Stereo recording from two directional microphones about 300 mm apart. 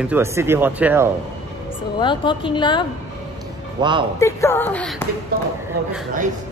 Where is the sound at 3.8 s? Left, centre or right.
Centre.